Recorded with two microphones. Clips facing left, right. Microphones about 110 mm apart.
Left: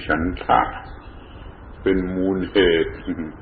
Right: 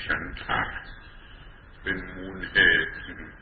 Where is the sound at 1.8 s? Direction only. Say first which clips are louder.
Left 16 dB; 55° left (ahead or behind).